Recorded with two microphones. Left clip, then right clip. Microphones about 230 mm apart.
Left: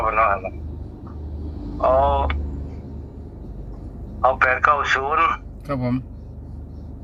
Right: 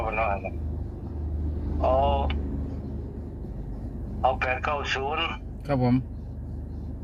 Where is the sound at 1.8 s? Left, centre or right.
Centre.